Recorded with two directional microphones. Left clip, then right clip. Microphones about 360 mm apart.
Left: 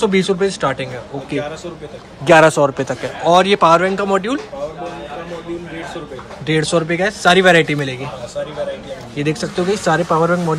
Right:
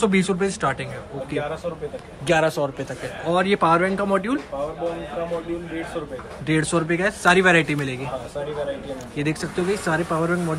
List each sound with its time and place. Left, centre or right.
0.0 s speech: centre
2.2 s a man's voice: left
3.3 s speech: centre
6.4 s speech: centre
9.1 s speech: centre